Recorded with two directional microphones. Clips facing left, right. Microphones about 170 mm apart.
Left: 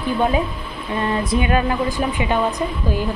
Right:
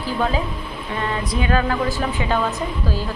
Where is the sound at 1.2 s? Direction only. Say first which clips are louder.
Left 1 dB; 25° left (ahead or behind).